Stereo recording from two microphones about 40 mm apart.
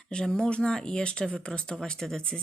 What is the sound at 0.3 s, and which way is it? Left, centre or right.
Speech, centre.